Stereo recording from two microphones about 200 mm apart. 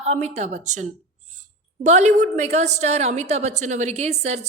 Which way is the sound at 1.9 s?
35° right (ahead or behind).